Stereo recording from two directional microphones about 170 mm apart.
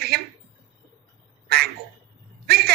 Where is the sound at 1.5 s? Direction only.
65° right (ahead or behind).